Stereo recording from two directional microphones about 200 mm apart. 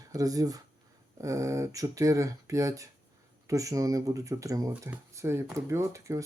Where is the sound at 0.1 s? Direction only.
20° right (ahead or behind).